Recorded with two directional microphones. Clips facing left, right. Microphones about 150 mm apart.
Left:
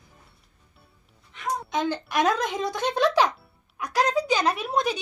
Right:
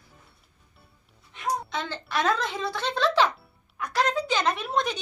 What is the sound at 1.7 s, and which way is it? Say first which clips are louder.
Speech: left 6 dB; 15° left (ahead or behind).